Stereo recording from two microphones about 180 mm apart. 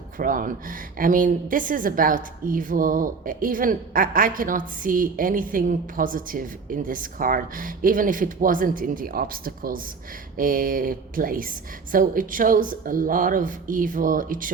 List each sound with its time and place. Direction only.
0.2 s a woman's voice: 50° right (ahead or behind)